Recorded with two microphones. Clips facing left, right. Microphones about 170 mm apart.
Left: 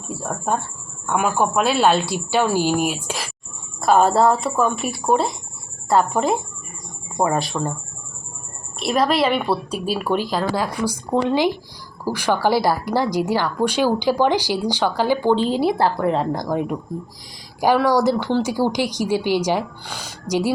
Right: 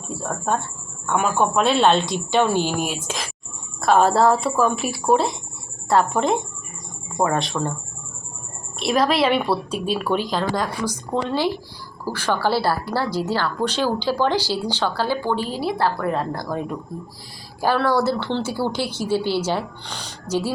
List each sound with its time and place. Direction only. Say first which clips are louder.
0.2 s speech: even; 10° left (ahead or behind)
8.8 s speech: even; centre (ahead or behind)